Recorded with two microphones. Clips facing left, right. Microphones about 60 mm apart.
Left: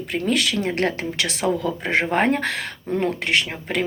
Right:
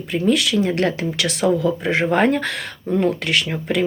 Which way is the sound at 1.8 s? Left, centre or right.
Left.